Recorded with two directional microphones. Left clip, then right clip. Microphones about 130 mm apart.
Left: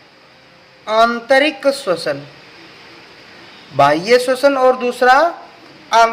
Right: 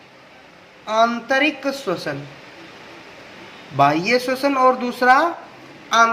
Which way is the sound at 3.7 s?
35° left (ahead or behind).